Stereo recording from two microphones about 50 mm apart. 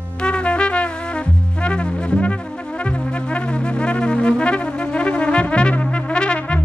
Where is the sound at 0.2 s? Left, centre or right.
Left.